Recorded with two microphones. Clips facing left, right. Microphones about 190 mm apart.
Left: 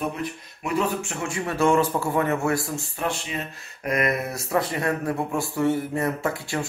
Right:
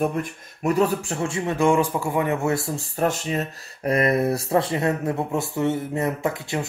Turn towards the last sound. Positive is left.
turn(degrees=-20)  # may be behind; listen again after turning